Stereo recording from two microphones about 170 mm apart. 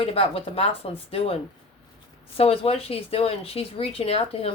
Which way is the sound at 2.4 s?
35° left (ahead or behind).